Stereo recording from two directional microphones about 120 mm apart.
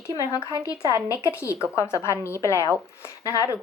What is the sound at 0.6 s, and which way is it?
Speech, 30° left (ahead or behind).